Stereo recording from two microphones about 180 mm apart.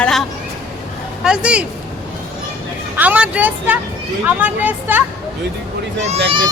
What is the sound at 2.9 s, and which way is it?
Speech, 10° right (ahead or behind).